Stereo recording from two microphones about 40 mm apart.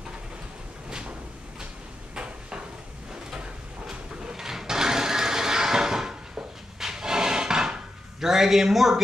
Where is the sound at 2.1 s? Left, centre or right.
Right.